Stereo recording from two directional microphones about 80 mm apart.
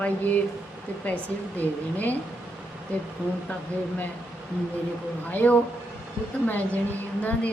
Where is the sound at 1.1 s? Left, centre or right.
Centre.